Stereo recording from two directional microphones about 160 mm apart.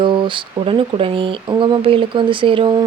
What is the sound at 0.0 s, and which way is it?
Speech, 30° right (ahead or behind).